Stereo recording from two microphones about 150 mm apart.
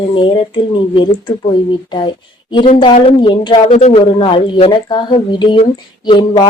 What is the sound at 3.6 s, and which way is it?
A woman's voice, 45° left (ahead or behind).